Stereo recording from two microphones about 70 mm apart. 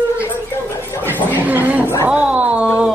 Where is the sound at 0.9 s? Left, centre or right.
Left.